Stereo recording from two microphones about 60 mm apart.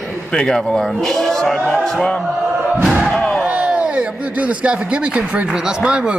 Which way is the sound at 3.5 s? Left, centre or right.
Right.